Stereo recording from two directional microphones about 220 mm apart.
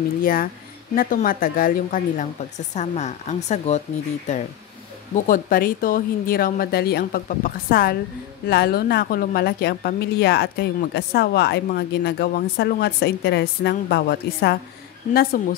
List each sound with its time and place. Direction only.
0.2 s a woman's voice: 40° left (ahead or behind)
5.1 s a woman's voice: 35° left (ahead or behind)